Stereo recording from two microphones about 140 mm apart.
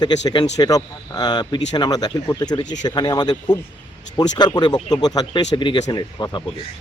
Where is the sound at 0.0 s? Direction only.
30° left (ahead or behind).